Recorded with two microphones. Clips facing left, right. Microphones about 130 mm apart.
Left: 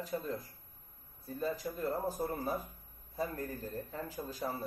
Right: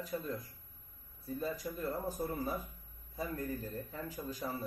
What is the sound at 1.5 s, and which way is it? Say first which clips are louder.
A man's voice: left 4 dB; 35° left (ahead or behind).